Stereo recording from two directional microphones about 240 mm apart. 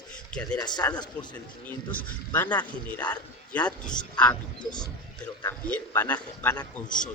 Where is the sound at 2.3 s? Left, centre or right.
Centre.